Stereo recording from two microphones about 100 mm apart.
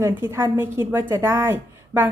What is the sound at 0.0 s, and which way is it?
A woman's voice, 25° right (ahead or behind).